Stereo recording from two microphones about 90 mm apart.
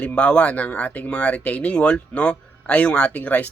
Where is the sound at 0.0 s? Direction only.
15° left (ahead or behind).